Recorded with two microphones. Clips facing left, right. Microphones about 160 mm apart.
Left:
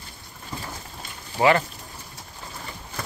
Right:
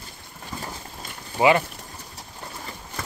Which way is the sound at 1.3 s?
15° right (ahead or behind).